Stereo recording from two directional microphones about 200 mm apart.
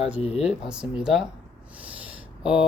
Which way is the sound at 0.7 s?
5° right (ahead or behind).